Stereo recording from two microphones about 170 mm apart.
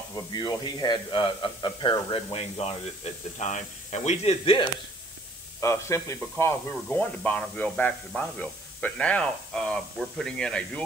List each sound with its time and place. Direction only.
0.1 s speech: 20° left (ahead or behind)
5.6 s speech: 15° left (ahead or behind)